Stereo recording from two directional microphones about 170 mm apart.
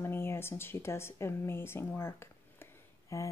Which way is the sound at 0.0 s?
15° left (ahead or behind).